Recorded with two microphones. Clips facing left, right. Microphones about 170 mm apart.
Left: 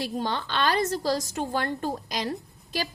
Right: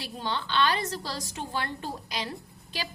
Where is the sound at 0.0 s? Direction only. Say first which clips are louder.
Left 4 dB; 45° left (ahead or behind).